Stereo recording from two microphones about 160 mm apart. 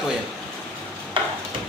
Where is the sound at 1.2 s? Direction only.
30° right (ahead or behind).